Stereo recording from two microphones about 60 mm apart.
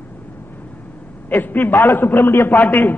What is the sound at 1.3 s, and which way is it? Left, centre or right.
A man's voice, left.